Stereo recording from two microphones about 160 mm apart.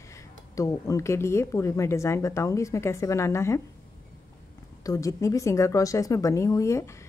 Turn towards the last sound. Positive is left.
turn(degrees=15)  # may be behind; listen again after turning